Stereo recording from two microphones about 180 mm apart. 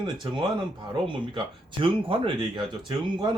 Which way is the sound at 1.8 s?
30° right (ahead or behind).